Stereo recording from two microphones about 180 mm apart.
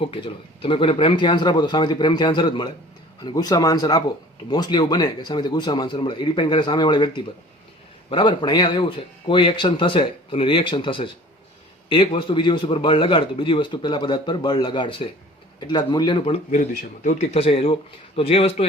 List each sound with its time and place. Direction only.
0.0 s a man's voice: 30° left (ahead or behind)